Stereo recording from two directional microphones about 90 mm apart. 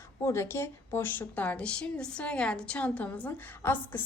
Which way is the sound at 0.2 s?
30° left (ahead or behind).